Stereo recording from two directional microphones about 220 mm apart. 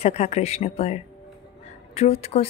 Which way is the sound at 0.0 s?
30° left (ahead or behind).